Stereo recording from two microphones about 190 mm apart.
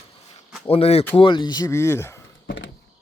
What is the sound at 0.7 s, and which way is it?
Speech, 30° left (ahead or behind).